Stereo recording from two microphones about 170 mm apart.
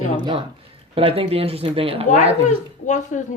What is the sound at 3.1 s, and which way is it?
Speech, 45° left (ahead or behind).